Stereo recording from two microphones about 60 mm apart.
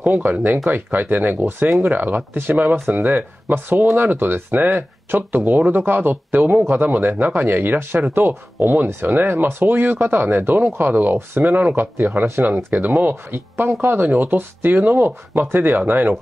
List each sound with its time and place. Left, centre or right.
0.0 s speech: right
3.8 s speech: right
4.1 s speech: right
12.5 s speech: right